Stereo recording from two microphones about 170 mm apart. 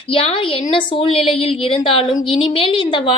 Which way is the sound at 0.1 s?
35° left (ahead or behind).